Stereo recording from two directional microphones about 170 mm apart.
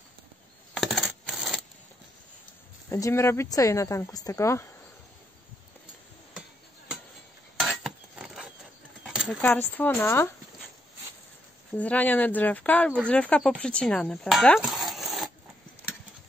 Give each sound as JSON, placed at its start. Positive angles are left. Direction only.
{"t": 0.7, "sound": "coin", "side_deg": 0}
{"t": 2.9, "sound": "speech", "side_deg": 15}
{"t": 7.5, "sound": "a sound", "side_deg": 0}
{"t": 9.4, "sound": "speech", "side_deg": 10}
{"t": 11.7, "sound": "speech", "side_deg": 10}